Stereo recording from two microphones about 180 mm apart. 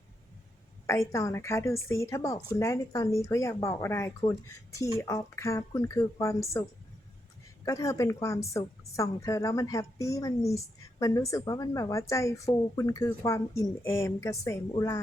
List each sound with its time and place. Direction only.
0.9 s a woman's voice: 15° left (ahead or behind)